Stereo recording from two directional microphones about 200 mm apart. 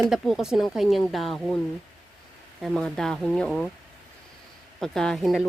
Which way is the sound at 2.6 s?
Centre (ahead or behind).